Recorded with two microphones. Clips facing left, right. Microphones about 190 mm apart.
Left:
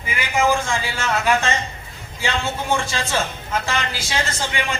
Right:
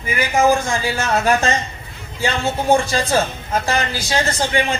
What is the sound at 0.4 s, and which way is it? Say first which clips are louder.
Speech: right 3 dB; 40° right (ahead or behind).